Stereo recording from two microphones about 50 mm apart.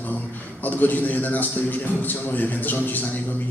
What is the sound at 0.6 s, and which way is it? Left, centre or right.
A man's voice, left.